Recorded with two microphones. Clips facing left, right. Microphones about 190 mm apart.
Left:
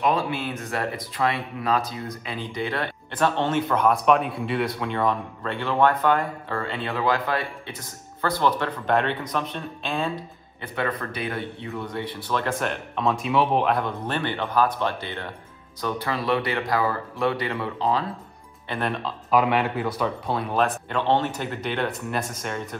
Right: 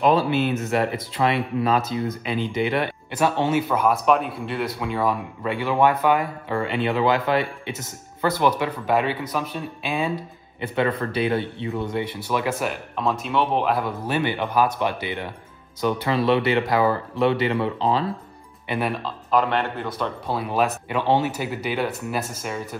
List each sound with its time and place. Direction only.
0.0 s speech: 30° right (ahead or behind); by 10.1 s 10° right (ahead or behind)
10.6 s speech: 25° right (ahead or behind)
18.7 s speech: 5° right (ahead or behind)